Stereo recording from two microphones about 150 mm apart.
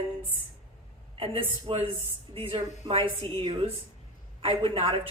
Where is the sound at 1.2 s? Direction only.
40° right (ahead or behind).